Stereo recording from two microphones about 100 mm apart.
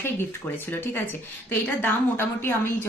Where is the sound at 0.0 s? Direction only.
20° left (ahead or behind).